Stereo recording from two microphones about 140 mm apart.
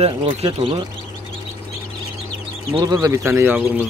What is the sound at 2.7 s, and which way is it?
Speech, 25° right (ahead or behind).